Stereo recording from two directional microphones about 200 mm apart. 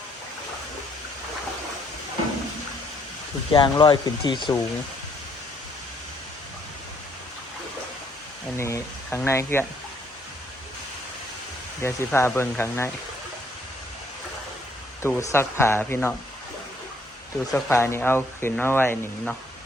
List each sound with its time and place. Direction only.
3.5 s speech: 25° left (ahead or behind)
8.5 s speech: 15° left (ahead or behind)
11.8 s speech: 15° left (ahead or behind)
15.0 s speech: 15° left (ahead or behind)
17.5 s speech: 15° left (ahead or behind)